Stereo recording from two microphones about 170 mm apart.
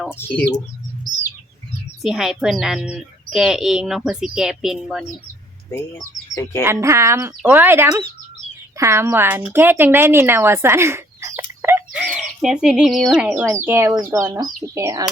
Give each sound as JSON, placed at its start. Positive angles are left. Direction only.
{"t": 0.1, "sound": "speech", "side_deg": 10}
{"t": 2.0, "sound": "speech", "side_deg": 0}
{"t": 5.7, "sound": "speech", "side_deg": 15}
{"t": 6.7, "sound": "speech", "side_deg": -15}